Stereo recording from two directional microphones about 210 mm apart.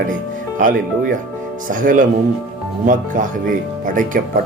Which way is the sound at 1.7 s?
40° right (ahead or behind).